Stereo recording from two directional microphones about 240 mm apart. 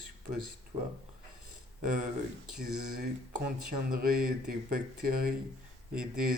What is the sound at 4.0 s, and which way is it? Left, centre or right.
Speech, right.